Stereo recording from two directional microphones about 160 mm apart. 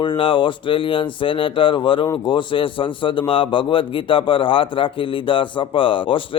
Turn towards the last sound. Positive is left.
turn(degrees=30)  # may be behind; listen again after turning